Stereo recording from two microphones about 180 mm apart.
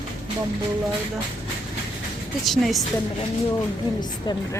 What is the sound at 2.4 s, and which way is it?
Speech, centre (ahead or behind).